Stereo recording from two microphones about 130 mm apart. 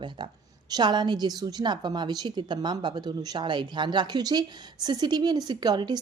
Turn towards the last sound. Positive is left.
turn(degrees=-35)  # may be behind; listen again after turning